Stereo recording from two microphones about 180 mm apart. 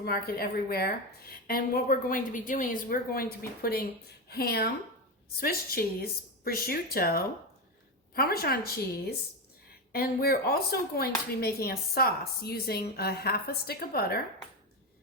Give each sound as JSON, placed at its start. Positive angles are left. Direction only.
{"t": 0.0, "sound": "speech", "side_deg": 60}